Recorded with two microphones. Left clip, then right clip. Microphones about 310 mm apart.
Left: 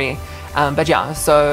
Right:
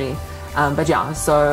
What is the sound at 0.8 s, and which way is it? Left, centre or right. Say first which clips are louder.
Music: left 3 dB; left.